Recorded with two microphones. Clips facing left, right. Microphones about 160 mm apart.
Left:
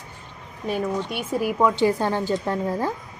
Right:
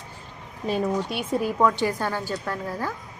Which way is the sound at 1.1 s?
Centre (ahead or behind).